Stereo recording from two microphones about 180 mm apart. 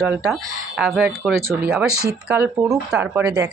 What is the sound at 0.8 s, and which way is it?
Speech, centre (ahead or behind).